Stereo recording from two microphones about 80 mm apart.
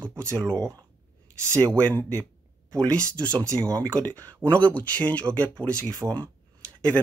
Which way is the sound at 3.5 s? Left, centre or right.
Centre.